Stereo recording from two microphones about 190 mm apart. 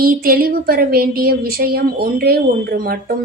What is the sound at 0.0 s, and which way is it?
Speech, 50° right (ahead or behind).